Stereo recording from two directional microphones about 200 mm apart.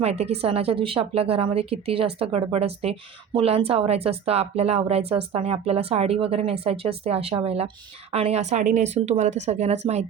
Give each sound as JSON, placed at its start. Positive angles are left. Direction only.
{"t": 0.0, "sound": "a woman's voice", "side_deg": -30}